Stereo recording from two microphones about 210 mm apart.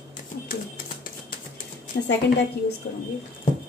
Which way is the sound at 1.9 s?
50° left (ahead or behind).